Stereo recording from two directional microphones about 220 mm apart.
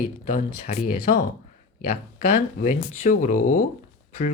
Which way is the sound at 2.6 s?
35° left (ahead or behind).